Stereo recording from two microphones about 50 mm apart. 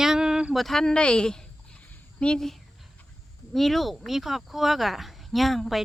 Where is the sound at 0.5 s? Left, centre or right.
Centre; by 2.3 s left.